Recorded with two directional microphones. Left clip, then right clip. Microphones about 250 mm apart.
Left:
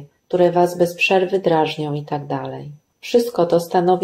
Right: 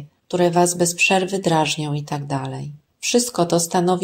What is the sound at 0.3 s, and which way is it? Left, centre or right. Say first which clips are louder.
Speech: left 2 dB; right.